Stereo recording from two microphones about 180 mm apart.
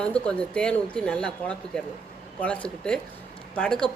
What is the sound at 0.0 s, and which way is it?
Speech, 5° left (ahead or behind).